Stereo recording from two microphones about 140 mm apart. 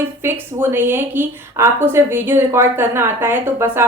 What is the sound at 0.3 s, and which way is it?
Speech, 15° right (ahead or behind).